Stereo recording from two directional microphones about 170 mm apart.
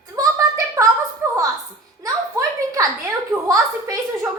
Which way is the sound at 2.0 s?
20° right (ahead or behind).